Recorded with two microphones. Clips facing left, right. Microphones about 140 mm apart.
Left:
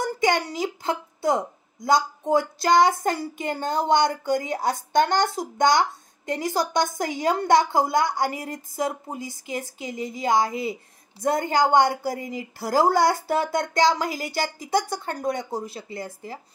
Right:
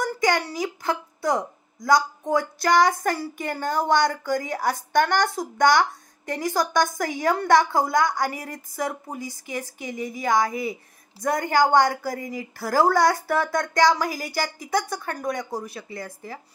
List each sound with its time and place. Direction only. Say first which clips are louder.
0.0 s a child's voice: even; 25° left (ahead or behind)